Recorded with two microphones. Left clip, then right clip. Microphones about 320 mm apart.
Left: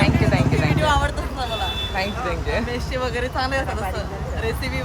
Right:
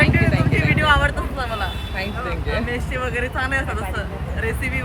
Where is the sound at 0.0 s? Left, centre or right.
Centre.